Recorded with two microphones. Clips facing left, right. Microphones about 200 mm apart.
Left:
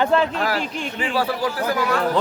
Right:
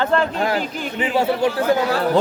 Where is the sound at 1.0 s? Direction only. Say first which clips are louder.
Right 5 dB; 25° right (ahead or behind).